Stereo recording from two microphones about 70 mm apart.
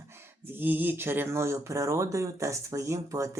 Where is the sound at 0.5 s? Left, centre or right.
Right.